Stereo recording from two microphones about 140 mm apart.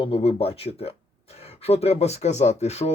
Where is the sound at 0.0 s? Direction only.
45° left (ahead or behind).